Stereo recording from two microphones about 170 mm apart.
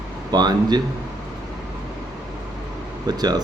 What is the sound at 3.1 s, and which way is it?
Speech, 25° right (ahead or behind).